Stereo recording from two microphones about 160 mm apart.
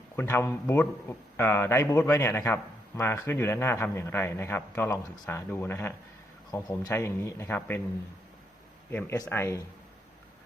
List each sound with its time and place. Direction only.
0.2 s a man's voice: 15° left (ahead or behind)
8.9 s a man's voice: 15° left (ahead or behind)